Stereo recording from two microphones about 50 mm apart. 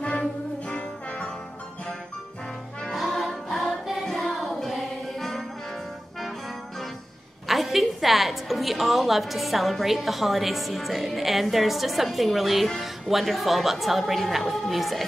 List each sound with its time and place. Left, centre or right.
0.7 s music: left
2.9 s music: centre
7.4 s a woman's voice: centre